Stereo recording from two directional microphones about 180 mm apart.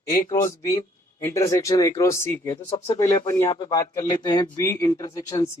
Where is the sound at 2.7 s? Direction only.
35° left (ahead or behind).